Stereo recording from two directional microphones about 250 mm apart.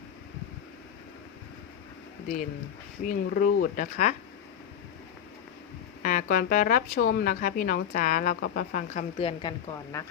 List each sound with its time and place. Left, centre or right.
3.0 s speech: left
6.0 s speech: left